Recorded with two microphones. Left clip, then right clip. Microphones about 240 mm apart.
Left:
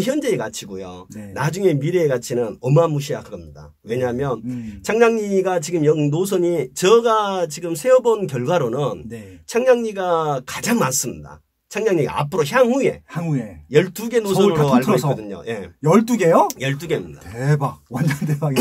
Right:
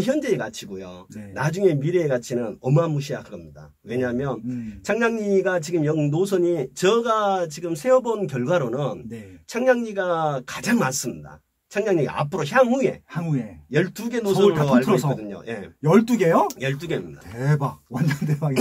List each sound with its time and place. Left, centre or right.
0.0 s speech: left
13.1 s speech: centre
13.7 s speech: left
14.8 s speech: centre
15.2 s speech: left
15.8 s speech: centre
16.5 s speech: left
17.4 s speech: centre